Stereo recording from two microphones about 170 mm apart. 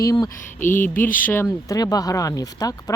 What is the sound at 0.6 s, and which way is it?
Speech, 50° left (ahead or behind).